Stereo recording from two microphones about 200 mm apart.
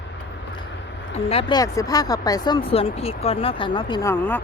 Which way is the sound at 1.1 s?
30° left (ahead or behind).